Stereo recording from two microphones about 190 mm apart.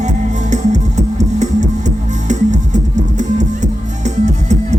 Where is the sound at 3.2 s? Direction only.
40° right (ahead or behind).